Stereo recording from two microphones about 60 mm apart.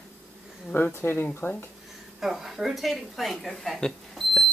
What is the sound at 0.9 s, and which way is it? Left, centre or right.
Speech, left.